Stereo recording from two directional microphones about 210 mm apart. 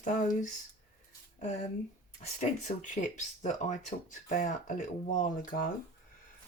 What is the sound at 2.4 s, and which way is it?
Speech, 35° left (ahead or behind).